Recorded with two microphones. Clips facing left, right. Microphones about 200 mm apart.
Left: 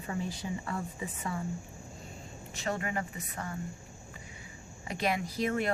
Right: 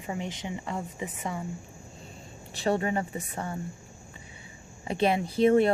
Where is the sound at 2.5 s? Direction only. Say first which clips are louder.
Right 7 dB; 30° right (ahead or behind).